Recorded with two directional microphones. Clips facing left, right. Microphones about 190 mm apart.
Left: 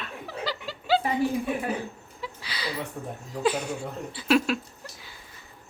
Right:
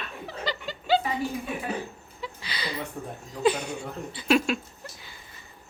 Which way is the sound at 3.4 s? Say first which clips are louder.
Right 2 dB; 5° left (ahead or behind).